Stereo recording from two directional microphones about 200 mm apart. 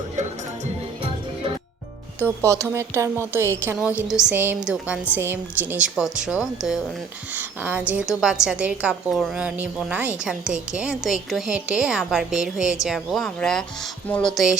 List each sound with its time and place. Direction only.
2.1 s a woman's voice: 10° right (ahead or behind)